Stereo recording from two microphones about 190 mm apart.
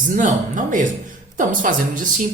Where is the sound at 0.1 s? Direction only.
45° right (ahead or behind).